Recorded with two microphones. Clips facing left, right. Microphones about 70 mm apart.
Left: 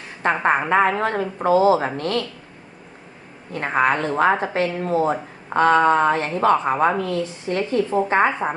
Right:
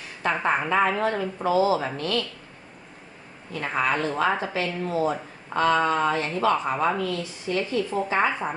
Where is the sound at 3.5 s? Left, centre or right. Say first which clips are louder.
Left 5 dB; left.